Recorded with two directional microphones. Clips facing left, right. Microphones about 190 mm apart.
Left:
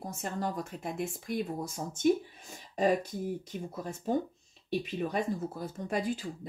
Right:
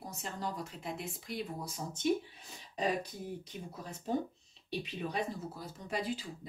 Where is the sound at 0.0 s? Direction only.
50° left (ahead or behind).